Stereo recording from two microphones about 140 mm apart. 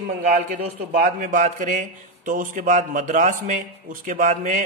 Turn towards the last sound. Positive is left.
turn(degrees=-65)  # may be behind; listen again after turning